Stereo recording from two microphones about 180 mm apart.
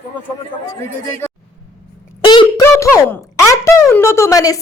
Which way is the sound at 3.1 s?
15° left (ahead or behind).